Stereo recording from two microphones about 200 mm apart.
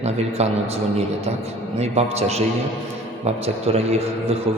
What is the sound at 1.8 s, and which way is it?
Speech, 30° right (ahead or behind).